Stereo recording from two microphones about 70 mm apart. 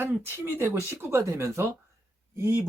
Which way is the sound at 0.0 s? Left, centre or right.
Right.